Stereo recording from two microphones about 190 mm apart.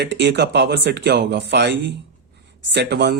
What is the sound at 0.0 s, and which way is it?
Speech, 60° right (ahead or behind).